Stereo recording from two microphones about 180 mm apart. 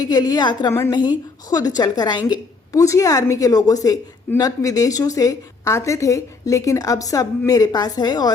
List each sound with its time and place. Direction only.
0.0 s a woman's voice: 20° left (ahead or behind)